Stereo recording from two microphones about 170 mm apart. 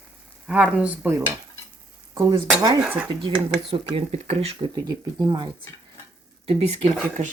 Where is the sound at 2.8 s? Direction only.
5° right (ahead or behind).